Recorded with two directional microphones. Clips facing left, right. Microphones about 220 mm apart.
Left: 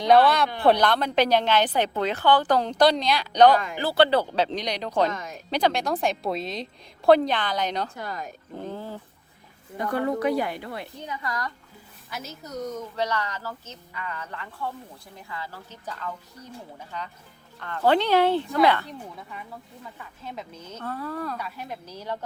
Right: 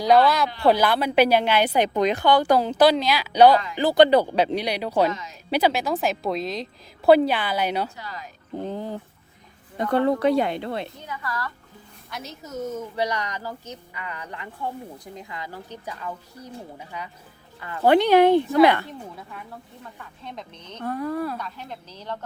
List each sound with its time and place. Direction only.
0.0 s a woman's voice: centre (ahead or behind)
5.1 s speech: 50° left (ahead or behind)
5.5 s a woman's voice: 5° right (ahead or behind)
7.9 s speech: 50° left (ahead or behind)
8.7 s speech: 20° right (ahead or behind)
9.7 s a woman's voice: 30° right (ahead or behind)
11.0 s speech: 20° left (ahead or behind)
12.1 s speech: centre (ahead or behind); by 18.9 s 15° right (ahead or behind)
18.9 s a woman's voice: centre (ahead or behind)
20.8 s speech: 15° right (ahead or behind)
21.3 s a woman's voice: 10° left (ahead or behind)